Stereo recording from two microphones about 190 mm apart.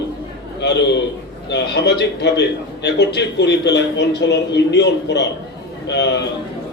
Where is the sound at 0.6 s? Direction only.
65° left (ahead or behind).